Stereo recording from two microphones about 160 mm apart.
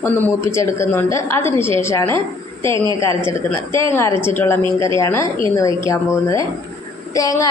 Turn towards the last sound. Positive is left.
turn(degrees=20)  # may be behind; listen again after turning